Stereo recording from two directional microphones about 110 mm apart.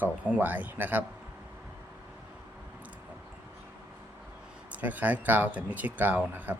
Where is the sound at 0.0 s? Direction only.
15° right (ahead or behind).